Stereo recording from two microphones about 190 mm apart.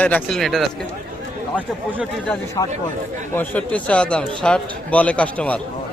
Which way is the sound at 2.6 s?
20° left (ahead or behind).